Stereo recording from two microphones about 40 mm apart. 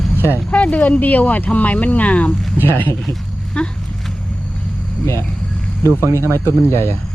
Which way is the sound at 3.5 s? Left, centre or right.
Left.